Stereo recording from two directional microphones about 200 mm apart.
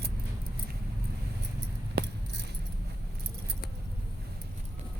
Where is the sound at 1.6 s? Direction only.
55° right (ahead or behind).